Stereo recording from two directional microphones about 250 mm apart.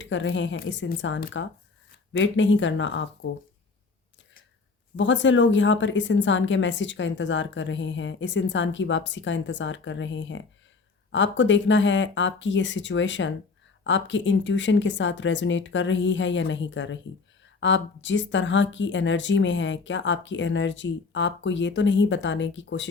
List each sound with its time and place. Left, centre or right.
0.0 s a woman's voice: left
4.9 s a woman's voice: left